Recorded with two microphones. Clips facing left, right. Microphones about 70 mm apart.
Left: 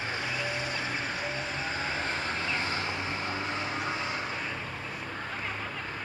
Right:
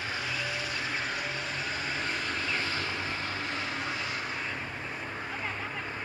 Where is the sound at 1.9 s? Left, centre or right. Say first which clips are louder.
Left 1 dB; left.